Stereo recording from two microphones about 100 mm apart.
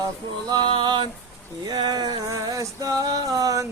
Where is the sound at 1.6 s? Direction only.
40° right (ahead or behind).